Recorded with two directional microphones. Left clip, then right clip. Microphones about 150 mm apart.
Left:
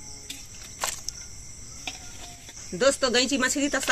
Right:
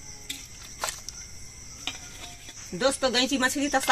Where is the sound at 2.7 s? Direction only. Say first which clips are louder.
Left 2 dB; 35° right (ahead or behind).